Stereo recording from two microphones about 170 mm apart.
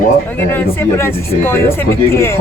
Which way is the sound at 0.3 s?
10° left (ahead or behind).